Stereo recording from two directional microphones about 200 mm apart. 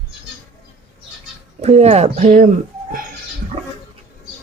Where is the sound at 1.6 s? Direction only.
35° right (ahead or behind).